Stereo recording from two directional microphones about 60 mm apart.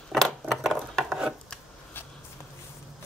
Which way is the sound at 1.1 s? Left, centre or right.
Centre.